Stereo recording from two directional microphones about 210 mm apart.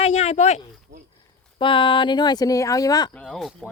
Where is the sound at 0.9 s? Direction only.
35° right (ahead or behind).